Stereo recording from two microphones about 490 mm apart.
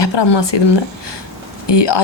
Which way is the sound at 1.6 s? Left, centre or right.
Left.